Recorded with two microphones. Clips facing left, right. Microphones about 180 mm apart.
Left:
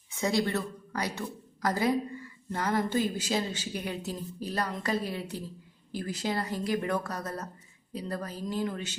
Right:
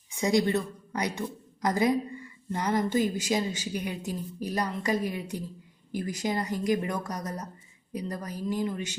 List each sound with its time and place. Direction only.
0.1 s a woman's voice: 15° right (ahead or behind)